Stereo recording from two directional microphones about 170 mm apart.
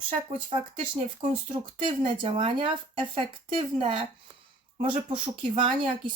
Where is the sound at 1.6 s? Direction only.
30° right (ahead or behind).